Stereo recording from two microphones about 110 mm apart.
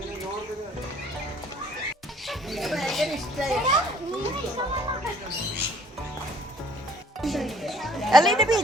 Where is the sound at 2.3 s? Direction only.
Centre (ahead or behind).